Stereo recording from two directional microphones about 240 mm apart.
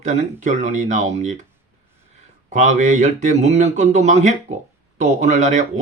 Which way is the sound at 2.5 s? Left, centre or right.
Right.